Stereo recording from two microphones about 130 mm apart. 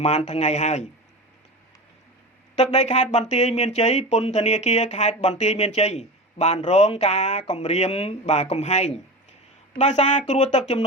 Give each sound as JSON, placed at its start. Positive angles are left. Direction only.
{"t": 0.0, "sound": "speech", "side_deg": 60}
{"t": 2.6, "sound": "speech", "side_deg": 60}